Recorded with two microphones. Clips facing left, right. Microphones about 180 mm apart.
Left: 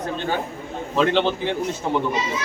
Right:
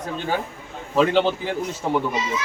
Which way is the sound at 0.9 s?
5° right (ahead or behind).